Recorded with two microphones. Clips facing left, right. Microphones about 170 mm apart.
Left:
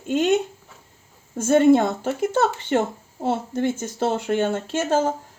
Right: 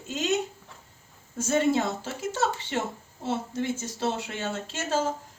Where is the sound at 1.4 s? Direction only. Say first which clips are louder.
Left 9 dB; 55° left (ahead or behind).